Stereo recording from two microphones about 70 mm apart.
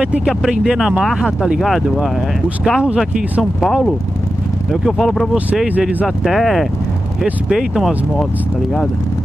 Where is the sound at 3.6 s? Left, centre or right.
Centre.